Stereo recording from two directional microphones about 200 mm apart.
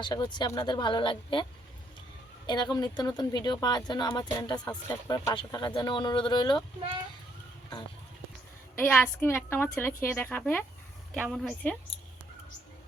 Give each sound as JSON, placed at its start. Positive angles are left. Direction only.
{"t": 0.0, "sound": "speech", "side_deg": 20}
{"t": 2.5, "sound": "speech", "side_deg": 20}
{"t": 8.7, "sound": "a woman's voice", "side_deg": 10}